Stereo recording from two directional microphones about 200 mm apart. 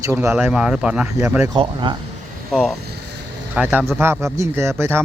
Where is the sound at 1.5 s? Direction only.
25° right (ahead or behind).